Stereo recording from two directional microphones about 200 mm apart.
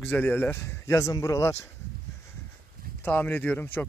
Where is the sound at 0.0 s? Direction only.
10° left (ahead or behind).